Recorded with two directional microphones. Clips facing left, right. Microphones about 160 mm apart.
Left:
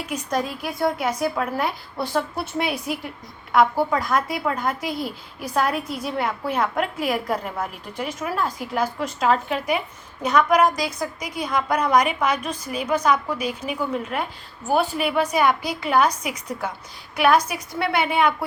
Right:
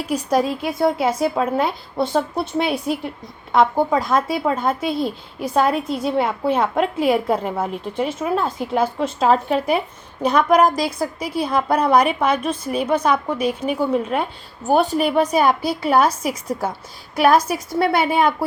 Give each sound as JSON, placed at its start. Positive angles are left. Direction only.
{"t": 0.0, "sound": "a woman's voice", "side_deg": -35}
{"t": 2.4, "sound": "a woman's voice", "side_deg": 0}
{"t": 3.5, "sound": "a woman's voice", "side_deg": -25}